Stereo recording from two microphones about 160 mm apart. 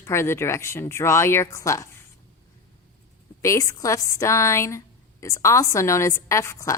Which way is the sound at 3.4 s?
20° left (ahead or behind).